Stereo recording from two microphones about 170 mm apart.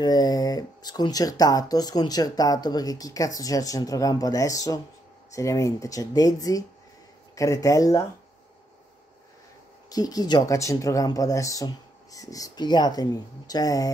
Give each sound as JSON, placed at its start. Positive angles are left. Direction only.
{"t": 0.0, "sound": "speech", "side_deg": 25}
{"t": 9.8, "sound": "speech", "side_deg": 20}